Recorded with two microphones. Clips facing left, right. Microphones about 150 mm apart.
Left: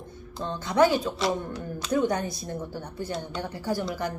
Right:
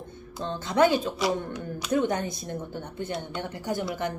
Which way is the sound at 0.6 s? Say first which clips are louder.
Even; 20° right (ahead or behind).